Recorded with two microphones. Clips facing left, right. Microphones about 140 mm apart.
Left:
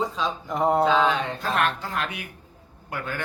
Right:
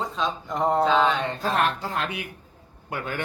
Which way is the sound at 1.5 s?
35° right (ahead or behind).